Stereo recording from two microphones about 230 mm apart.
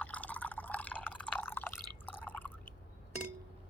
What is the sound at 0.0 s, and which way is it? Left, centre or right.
Drip, centre.